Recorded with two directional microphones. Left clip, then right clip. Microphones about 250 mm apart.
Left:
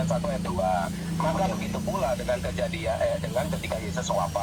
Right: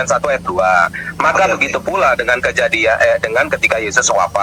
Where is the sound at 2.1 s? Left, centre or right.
Right.